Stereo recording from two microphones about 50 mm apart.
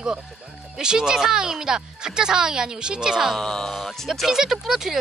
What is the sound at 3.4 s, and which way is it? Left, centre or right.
Speech, centre.